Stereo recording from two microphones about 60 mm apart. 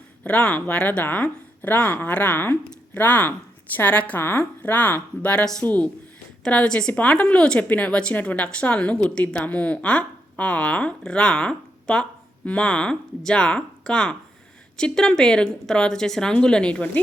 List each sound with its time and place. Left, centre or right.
0.3 s speech: left
1.1 s a sound: left
1.7 s a woman's voice: left